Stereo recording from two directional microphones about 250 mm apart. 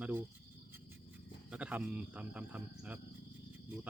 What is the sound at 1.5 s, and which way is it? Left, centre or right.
Speech, centre.